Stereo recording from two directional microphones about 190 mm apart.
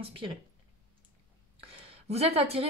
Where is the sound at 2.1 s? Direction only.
35° right (ahead or behind).